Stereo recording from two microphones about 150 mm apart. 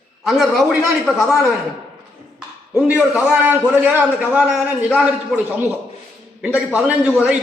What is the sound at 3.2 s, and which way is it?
A man's voice, 10° right (ahead or behind).